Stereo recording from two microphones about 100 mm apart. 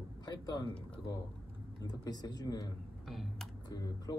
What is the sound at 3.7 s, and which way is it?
Speech, 40° left (ahead or behind).